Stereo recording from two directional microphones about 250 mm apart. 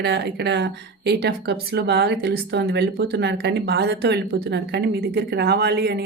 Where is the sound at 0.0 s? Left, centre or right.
Right.